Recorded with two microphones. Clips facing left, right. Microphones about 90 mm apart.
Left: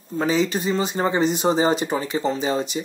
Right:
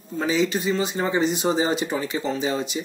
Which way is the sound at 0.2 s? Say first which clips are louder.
Left 1 dB; 40° left (ahead or behind).